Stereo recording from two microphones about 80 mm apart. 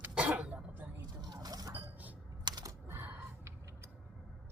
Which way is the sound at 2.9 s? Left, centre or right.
Right.